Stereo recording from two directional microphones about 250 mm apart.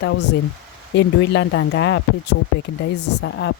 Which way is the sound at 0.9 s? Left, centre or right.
Left.